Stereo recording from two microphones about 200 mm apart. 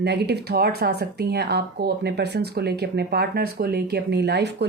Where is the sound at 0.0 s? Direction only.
55° right (ahead or behind).